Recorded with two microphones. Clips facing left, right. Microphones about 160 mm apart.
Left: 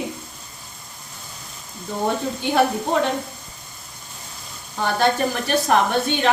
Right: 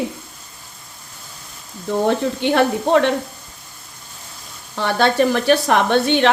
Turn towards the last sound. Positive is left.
turn(degrees=-75)  # may be behind; listen again after turning